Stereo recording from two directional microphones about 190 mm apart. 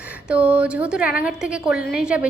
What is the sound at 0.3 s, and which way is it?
A woman's voice, 5° right (ahead or behind).